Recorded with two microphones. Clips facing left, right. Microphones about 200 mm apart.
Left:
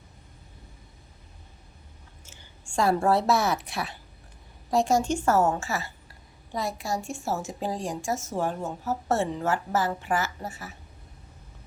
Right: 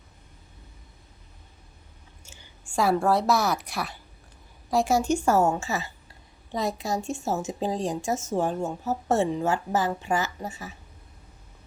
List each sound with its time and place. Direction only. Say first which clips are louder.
2.6 s a woman's voice: even; 5° right (ahead or behind)